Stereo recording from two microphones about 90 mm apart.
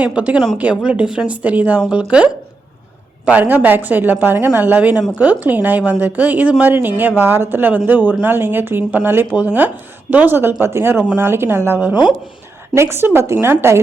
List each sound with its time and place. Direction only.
0.0 s a woman's voice: 15° right (ahead or behind)
11.8 s a woman's voice: 15° right (ahead or behind)
12.7 s speech: 30° right (ahead or behind)